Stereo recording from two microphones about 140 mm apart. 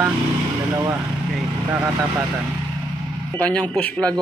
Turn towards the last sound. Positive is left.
turn(degrees=10)  # may be behind; listen again after turning